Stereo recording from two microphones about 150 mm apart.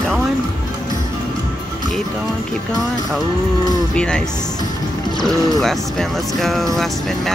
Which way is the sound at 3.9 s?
5° left (ahead or behind).